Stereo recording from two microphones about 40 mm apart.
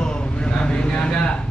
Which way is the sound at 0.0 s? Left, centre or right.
Left.